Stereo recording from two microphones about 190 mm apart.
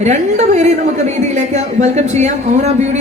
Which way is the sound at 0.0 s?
35° right (ahead or behind).